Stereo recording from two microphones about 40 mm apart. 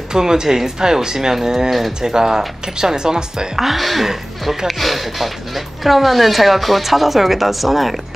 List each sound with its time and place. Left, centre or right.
0.1 s speech: centre
2.0 s speech: centre
3.5 s speech: centre